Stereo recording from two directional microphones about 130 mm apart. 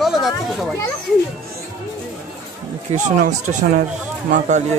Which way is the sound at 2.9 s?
70° right (ahead or behind).